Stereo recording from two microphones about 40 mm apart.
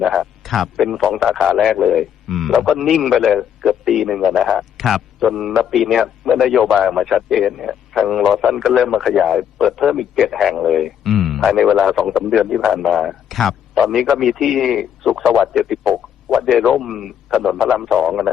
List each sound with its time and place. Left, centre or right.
0.0 s a man's voice: centre